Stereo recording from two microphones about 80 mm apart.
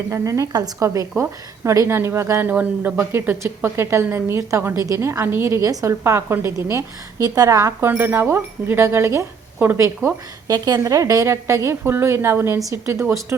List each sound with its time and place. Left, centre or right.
0.1 s a woman's voice: right
2.4 s speech: right
3.0 s a woman's voice: right
5.6 s a woman's voice: right
6.0 s a woman's voice: right
7.2 s a woman's voice: right
7.8 s a woman's voice: right
12.5 s a woman's voice: right
12.8 s a woman's voice: right